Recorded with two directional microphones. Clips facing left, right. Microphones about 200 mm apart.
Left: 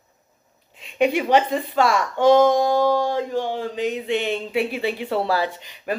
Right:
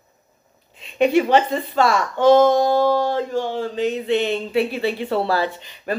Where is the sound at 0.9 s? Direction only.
10° left (ahead or behind).